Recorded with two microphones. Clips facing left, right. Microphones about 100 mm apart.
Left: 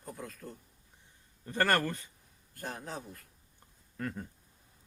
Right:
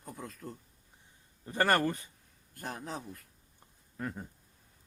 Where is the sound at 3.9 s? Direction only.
15° right (ahead or behind).